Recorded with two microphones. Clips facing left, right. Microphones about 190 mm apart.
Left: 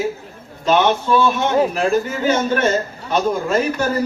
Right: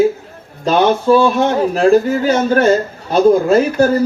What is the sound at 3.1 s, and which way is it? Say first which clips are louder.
Speech: right 8 dB; 35° right (ahead or behind).